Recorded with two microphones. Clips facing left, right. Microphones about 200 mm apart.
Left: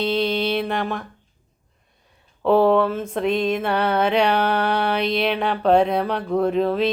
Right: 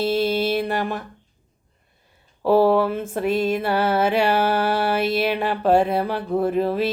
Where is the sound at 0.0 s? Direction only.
5° right (ahead or behind).